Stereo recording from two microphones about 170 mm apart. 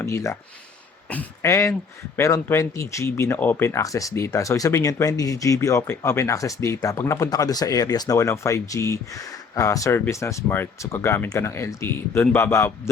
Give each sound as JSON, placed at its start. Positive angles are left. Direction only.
{"t": 0.0, "sound": "speech", "side_deg": 15}